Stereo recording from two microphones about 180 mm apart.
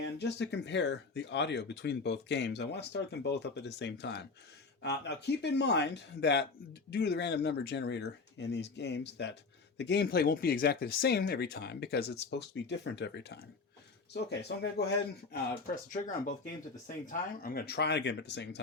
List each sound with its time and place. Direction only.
0.0 s speech: 70° left (ahead or behind)
15.9 s speech: 50° left (ahead or behind); by 18.6 s 75° left (ahead or behind)